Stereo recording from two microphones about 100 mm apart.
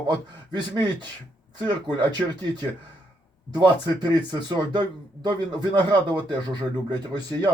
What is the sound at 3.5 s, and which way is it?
Speech, 45° right (ahead or behind).